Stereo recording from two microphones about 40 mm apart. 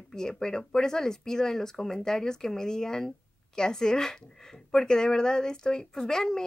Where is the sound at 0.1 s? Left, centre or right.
Centre.